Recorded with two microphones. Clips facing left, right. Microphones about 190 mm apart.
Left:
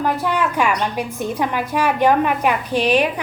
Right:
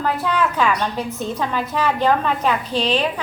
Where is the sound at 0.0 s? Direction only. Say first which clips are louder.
Left 1 dB; 15° left (ahead or behind).